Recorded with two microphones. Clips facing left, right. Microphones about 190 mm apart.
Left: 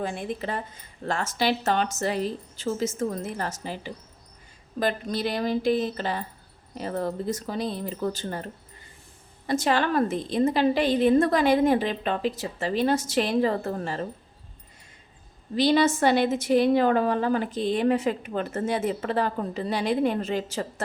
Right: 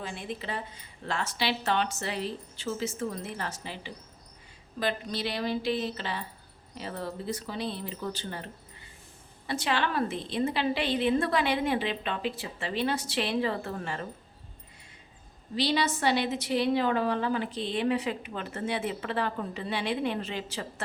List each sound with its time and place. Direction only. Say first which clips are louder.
0.0 s a woman's voice: left 7 dB; 50° left (ahead or behind)
9.5 s a woman's voice: left 6 dB; 45° left (ahead or behind)
15.5 s a woman's voice: left 7 dB; 50° left (ahead or behind)